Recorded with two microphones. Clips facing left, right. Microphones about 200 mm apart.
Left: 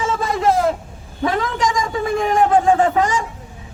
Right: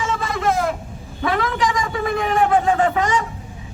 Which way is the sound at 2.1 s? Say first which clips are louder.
Left 3 dB; 30° left (ahead or behind).